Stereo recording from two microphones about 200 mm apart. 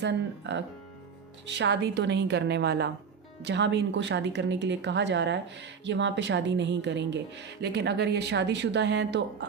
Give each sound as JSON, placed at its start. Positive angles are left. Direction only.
{"t": 0.0, "sound": "speech", "side_deg": -60}